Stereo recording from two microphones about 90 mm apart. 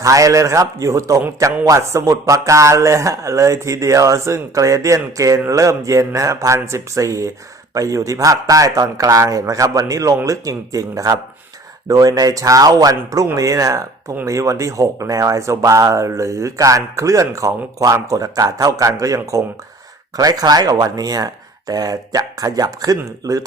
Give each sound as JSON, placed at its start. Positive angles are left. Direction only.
{"t": 0.0, "sound": "speech", "side_deg": -40}